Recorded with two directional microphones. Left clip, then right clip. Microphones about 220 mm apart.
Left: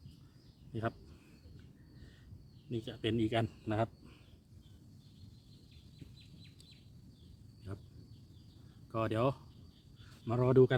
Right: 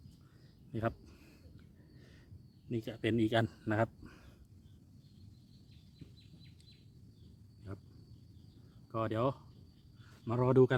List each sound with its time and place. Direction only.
0.7 s speech: 40° right (ahead or behind)
2.6 s speech: 30° right (ahead or behind)
8.9 s speech: centre (ahead or behind)
10.2 s speech: 15° right (ahead or behind)